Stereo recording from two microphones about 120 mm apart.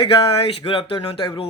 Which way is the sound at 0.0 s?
50° left (ahead or behind).